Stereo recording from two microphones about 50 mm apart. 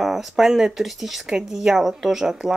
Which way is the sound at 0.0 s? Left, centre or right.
Centre.